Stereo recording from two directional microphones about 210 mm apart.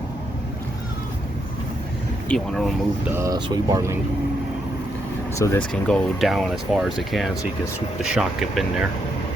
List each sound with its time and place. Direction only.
2.3 s speech: centre (ahead or behind)
3.1 s speech: 15° right (ahead or behind)
5.4 s speech: 15° left (ahead or behind)
5.7 s speech: centre (ahead or behind)